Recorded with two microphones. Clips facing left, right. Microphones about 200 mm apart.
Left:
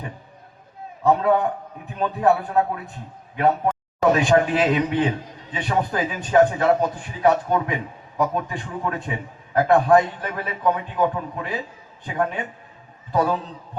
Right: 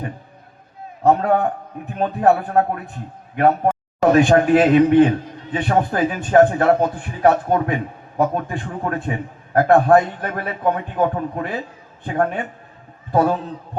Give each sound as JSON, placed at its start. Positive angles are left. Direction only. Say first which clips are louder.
{"t": 1.0, "sound": "a man's voice", "louder": "right 2 dB", "side_deg": -50}